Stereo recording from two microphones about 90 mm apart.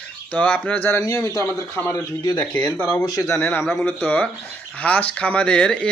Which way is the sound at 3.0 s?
35° left (ahead or behind).